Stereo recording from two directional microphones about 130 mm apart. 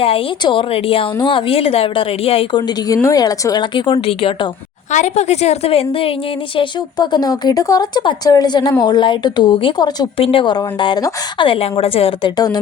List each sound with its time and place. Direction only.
0.0 s a woman's voice: 45° left (ahead or behind)
4.9 s a woman's voice: 65° left (ahead or behind); by 6.1 s 45° left (ahead or behind)
6.6 s a woman's voice: 35° left (ahead or behind)